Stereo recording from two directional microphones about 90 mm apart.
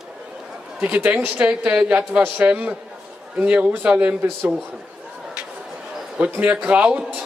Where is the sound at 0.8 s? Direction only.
15° right (ahead or behind).